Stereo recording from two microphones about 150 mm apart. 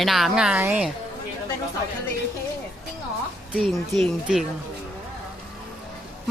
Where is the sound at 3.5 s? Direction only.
Centre (ahead or behind).